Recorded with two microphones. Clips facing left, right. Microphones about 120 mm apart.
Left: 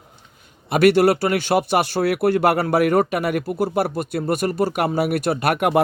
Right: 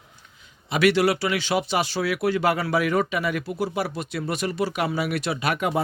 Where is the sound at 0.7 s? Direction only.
50° left (ahead or behind).